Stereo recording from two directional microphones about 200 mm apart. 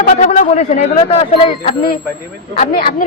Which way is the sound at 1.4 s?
25° left (ahead or behind).